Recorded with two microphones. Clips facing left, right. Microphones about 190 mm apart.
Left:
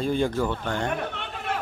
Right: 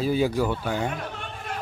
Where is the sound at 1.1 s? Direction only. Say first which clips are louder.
Left 3 dB; 70° left (ahead or behind).